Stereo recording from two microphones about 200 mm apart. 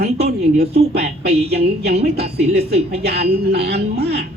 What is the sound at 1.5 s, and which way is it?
Speech, 50° right (ahead or behind).